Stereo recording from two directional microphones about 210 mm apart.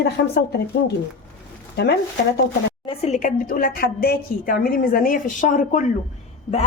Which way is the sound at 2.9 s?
30° left (ahead or behind).